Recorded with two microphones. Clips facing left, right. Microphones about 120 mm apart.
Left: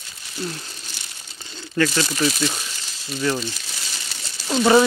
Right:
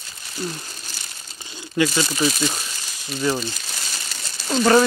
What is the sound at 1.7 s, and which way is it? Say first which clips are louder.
Speech: even; 15° right (ahead or behind).